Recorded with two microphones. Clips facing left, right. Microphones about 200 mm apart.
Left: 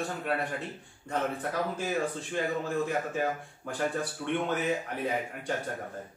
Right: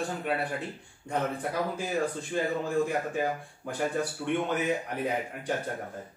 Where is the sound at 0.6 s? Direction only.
15° right (ahead or behind).